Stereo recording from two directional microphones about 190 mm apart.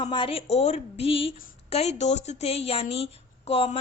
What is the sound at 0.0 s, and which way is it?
Speech, 25° left (ahead or behind).